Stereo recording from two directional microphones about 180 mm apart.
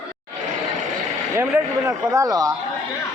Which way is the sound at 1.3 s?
15° right (ahead or behind).